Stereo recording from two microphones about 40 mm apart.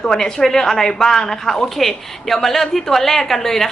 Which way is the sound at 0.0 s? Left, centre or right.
Centre.